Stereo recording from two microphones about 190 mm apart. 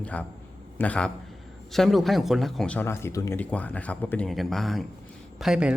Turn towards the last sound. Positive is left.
turn(degrees=-5)  # may be behind; listen again after turning